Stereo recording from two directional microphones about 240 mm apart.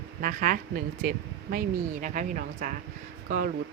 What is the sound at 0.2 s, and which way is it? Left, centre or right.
Speech, right.